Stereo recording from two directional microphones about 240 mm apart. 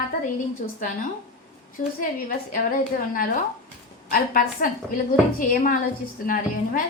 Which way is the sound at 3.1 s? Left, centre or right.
Left.